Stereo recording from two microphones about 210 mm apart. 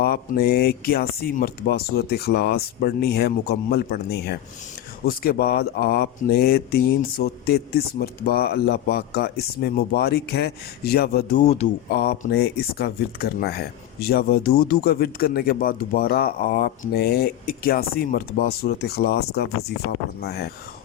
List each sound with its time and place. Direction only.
0.0 s speech: 45° left (ahead or behind)
11.4 s speech: 30° left (ahead or behind)
12.2 s speech: 45° left (ahead or behind)